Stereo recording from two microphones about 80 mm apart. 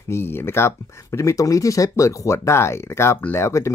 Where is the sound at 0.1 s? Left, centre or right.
Left.